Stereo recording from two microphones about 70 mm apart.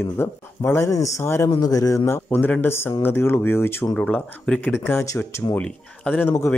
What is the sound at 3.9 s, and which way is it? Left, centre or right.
Speech, centre.